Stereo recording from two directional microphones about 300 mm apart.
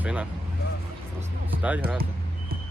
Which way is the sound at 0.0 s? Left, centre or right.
Centre.